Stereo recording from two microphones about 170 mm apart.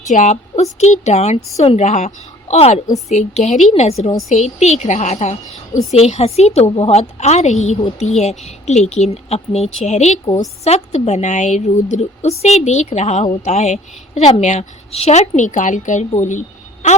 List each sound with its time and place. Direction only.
0.1 s a woman's voice: 45° left (ahead or behind)